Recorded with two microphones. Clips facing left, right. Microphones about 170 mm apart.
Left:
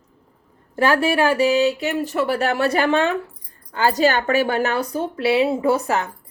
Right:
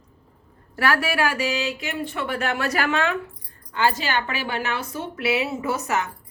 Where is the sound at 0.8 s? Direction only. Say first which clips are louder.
Left 5 dB; 25° left (ahead or behind).